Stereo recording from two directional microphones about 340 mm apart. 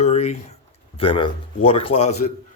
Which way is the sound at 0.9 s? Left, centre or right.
Centre.